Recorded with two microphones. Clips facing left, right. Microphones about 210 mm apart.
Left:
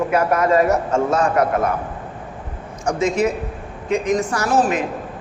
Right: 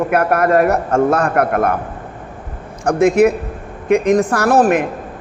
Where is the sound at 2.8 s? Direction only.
60° right (ahead or behind).